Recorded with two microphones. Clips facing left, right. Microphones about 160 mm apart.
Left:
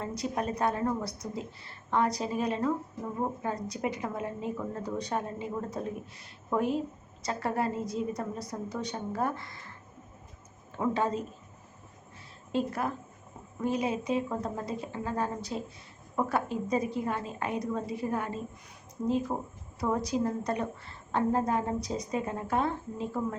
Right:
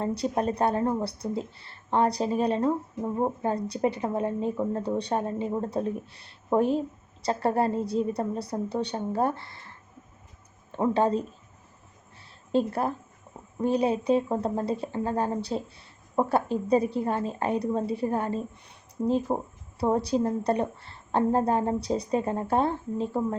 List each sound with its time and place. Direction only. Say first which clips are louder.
0.2 s speech: right 2 dB; 30° right (ahead or behind)
10.8 s speech: right 5 dB; 30° right (ahead or behind)
12.5 s a woman's voice: right 5 dB; 30° right (ahead or behind)